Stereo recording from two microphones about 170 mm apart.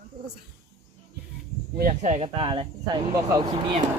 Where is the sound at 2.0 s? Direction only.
40° right (ahead or behind); by 3.4 s 20° right (ahead or behind).